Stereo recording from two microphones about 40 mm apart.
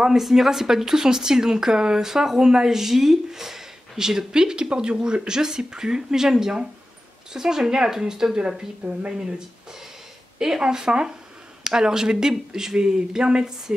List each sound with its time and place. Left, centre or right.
0.0 s a woman's voice: centre
10.4 s a woman's voice: centre